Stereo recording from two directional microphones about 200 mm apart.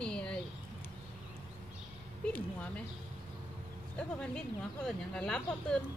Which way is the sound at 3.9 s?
5° left (ahead or behind).